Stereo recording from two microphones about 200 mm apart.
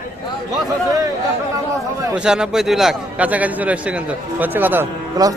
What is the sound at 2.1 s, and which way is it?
A man's voice, 5° right (ahead or behind).